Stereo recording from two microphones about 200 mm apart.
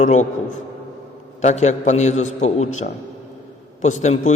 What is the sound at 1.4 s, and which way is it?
A man's voice, 35° left (ahead or behind).